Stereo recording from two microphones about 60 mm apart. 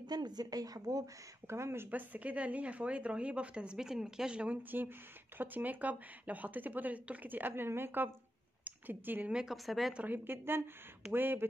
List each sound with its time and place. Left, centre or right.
0.1 s speech: right
1.5 s speech: right
1.9 s a woman's voice: right
4.6 s a woman's voice: right
9.3 s a woman's voice: centre
9.7 s speech: centre
9.9 s a woman's voice: right